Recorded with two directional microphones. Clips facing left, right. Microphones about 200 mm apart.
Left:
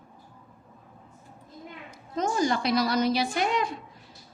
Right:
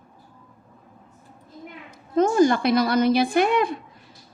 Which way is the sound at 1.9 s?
55° right (ahead or behind).